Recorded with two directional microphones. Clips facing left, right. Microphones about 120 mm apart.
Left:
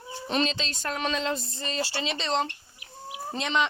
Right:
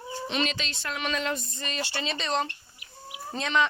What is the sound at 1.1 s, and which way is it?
Speech, 25° left (ahead or behind).